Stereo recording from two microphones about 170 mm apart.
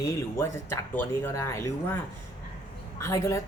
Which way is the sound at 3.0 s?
15° left (ahead or behind).